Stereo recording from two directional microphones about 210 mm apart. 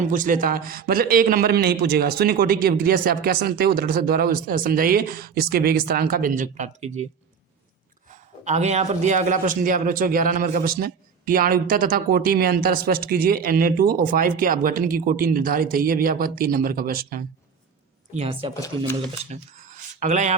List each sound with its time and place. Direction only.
0.0 s a man's voice: 40° right (ahead or behind)
8.1 s a man's voice: 35° right (ahead or behind)
18.1 s a man's voice: 30° right (ahead or behind)